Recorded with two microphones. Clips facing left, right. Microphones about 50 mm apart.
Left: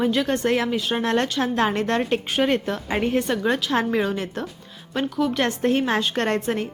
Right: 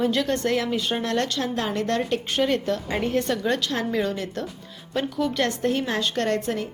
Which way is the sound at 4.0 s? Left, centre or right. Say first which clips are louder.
Left 2 dB; left.